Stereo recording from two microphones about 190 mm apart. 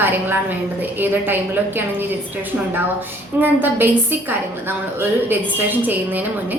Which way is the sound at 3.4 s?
10° right (ahead or behind).